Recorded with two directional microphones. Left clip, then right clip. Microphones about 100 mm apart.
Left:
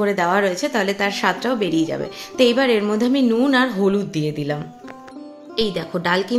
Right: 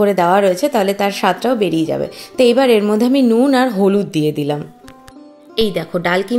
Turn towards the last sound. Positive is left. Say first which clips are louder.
# right 3 dB
turn(degrees=-25)  # may be behind; listen again after turning